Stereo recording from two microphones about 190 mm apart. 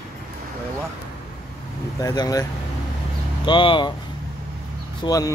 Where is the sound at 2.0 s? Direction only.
20° left (ahead or behind).